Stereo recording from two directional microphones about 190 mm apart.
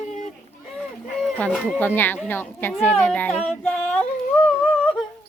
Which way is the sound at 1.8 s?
10° left (ahead or behind).